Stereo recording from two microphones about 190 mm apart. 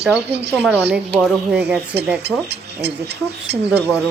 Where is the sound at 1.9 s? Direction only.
60° right (ahead or behind).